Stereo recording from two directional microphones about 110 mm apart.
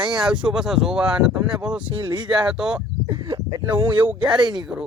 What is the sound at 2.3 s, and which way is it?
Speech, 5° right (ahead or behind).